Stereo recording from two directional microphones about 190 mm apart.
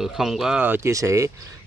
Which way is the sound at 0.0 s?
Centre (ahead or behind).